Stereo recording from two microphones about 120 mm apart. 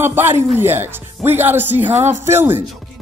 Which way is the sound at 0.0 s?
20° right (ahead or behind).